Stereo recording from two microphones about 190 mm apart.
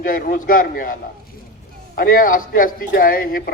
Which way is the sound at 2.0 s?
45° left (ahead or behind).